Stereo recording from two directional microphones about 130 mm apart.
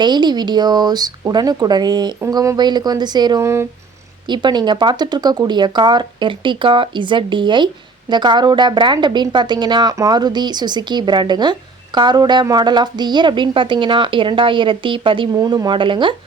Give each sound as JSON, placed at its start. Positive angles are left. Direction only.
{"t": 0.0, "sound": "a woman's voice", "side_deg": -35}
{"t": 3.4, "sound": "speech", "side_deg": -20}
{"t": 4.3, "sound": "a woman's voice", "side_deg": -35}